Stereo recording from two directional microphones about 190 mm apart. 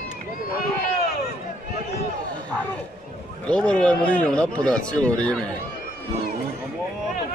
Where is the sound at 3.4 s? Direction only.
5° left (ahead or behind).